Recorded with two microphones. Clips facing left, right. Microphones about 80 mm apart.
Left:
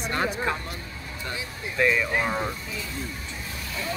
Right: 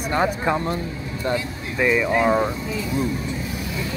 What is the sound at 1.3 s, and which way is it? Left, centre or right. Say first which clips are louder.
Speech: right 12 dB; right.